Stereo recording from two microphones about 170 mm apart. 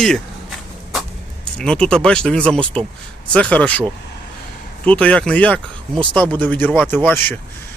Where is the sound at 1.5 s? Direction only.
5° left (ahead or behind).